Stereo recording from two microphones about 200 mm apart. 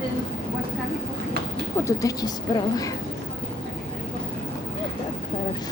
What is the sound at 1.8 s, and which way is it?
A woman's voice, 15° left (ahead or behind).